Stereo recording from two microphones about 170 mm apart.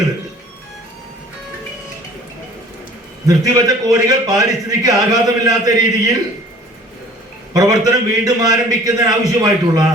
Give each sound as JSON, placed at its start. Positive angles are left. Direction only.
{"t": 3.2, "sound": "a man's voice", "side_deg": -20}
{"t": 7.5, "sound": "a man's voice", "side_deg": -20}